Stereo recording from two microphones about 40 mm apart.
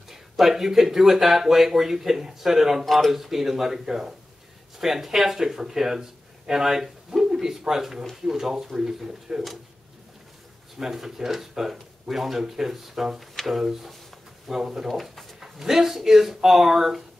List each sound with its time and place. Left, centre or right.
0.1 s speech: centre
2.8 s speech: centre
3.1 s speech: centre
10.8 s speech: centre
13.3 s speech: centre
13.6 s speech: centre
14.9 s drawer open or close: centre
15.6 s speech: centre